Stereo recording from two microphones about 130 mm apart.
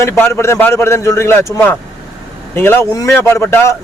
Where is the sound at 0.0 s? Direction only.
20° left (ahead or behind).